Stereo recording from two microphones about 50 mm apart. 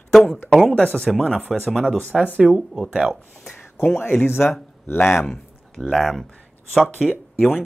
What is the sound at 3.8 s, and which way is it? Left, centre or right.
Speech, left.